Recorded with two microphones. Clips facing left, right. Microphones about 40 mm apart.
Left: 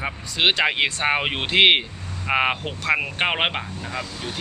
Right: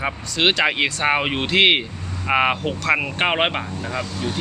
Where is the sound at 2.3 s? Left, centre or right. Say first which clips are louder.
Right 3 dB; centre.